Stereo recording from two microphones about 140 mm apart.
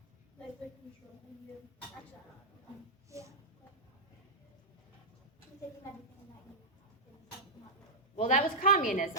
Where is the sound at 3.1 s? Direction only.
20° right (ahead or behind).